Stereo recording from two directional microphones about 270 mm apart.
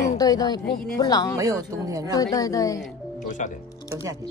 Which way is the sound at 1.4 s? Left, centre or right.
Centre.